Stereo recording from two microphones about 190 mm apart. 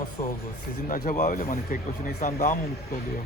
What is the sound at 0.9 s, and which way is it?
Speech, 45° left (ahead or behind).